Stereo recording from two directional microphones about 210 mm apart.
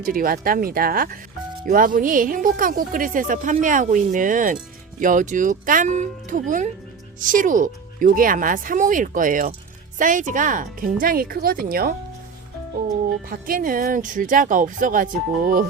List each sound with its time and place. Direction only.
0.0 s speech: 40° right (ahead or behind)
13.2 s speech: 40° right (ahead or behind)